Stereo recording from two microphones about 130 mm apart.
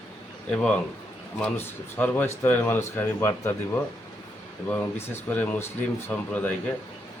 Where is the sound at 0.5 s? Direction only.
10° left (ahead or behind).